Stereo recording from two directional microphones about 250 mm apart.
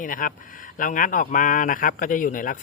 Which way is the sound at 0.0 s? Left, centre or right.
Left.